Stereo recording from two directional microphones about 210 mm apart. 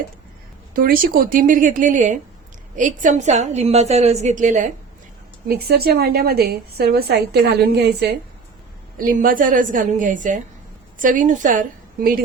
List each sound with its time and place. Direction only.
0.7 s a woman's voice: 45° right (ahead or behind)
5.5 s a woman's voice: 50° right (ahead or behind)